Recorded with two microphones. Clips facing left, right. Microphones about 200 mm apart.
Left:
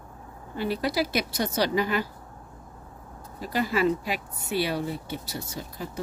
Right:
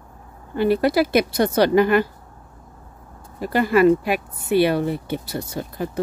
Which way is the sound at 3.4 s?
55° right (ahead or behind).